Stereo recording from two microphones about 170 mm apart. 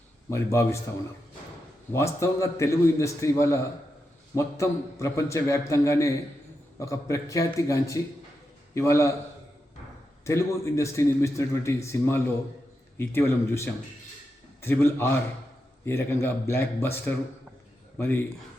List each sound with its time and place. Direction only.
0.3 s a man's voice: 15° left (ahead or behind)
1.9 s a man's voice: 15° left (ahead or behind)
10.2 s a man's voice: 15° left (ahead or behind)